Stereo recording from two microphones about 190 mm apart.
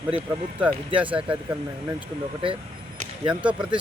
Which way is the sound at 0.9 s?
25° right (ahead or behind).